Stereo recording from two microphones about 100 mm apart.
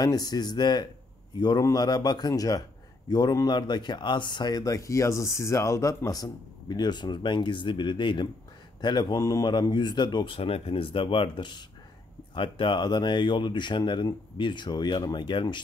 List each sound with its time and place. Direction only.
0.0 s speech: 40° left (ahead or behind)